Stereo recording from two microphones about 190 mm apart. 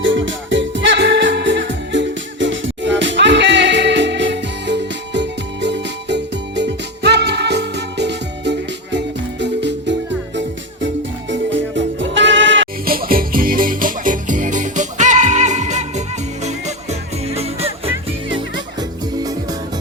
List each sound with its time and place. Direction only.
0.0 s music: 75° right (ahead or behind)
12.8 s music: 50° right (ahead or behind); by 17.9 s 30° right (ahead or behind)
18.3 s music: 20° right (ahead or behind)